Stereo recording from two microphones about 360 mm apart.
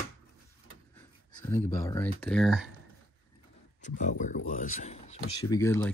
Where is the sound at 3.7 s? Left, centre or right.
Left.